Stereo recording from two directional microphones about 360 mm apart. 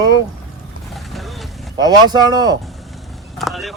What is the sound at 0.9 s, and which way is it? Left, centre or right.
Vehicle, centre.